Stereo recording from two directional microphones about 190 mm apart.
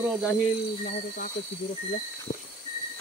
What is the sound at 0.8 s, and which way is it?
Speech, 45° left (ahead or behind).